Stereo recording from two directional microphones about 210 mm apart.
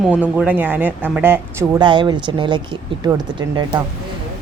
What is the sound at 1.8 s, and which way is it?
Speech, 20° right (ahead or behind).